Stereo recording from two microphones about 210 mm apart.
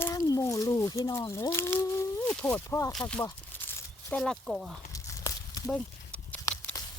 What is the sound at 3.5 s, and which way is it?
Crumpling, 10° left (ahead or behind).